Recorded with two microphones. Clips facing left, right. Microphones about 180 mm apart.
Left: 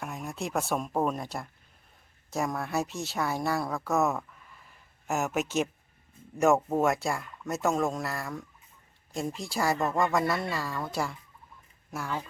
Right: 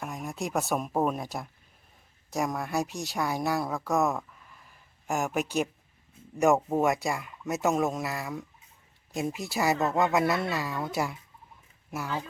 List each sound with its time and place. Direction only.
0.0 s speech: centre (ahead or behind)